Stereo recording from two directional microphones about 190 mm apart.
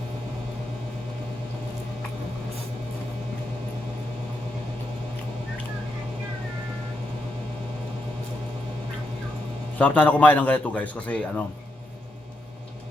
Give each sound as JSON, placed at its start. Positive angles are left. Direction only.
{"t": 9.7, "sound": "a man's voice", "side_deg": 10}